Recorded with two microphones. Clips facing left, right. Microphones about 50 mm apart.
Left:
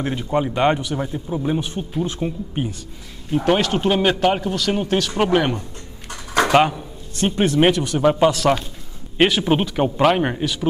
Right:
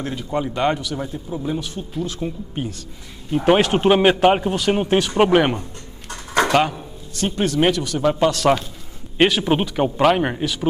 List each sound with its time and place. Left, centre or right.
0.0 s speech: left
2.2 s speech: centre
3.3 s speech: centre
3.5 s a man's voice: right
7.2 s speech: left
9.2 s speech: centre